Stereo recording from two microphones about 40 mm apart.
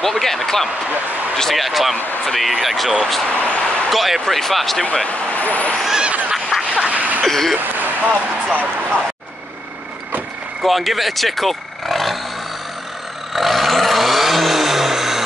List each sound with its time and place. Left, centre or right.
0.0 s speech: centre
3.3 s vehicle: left
3.9 s speech: centre
5.0 s speech: left
6.5 s quack: centre
6.9 s a sound: right
7.2 s speech: centre
7.7 s a sound: right
8.1 s speech: right
10.6 s speech: centre
13.3 s vehicle: centre